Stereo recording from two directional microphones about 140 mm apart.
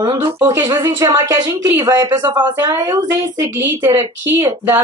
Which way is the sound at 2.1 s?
30° right (ahead or behind).